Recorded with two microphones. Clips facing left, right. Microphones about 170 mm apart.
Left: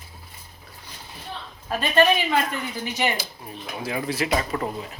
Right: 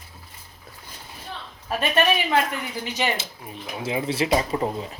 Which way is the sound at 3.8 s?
20° right (ahead or behind).